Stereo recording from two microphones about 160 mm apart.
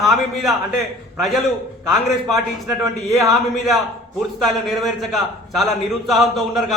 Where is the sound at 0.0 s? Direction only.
Centre (ahead or behind).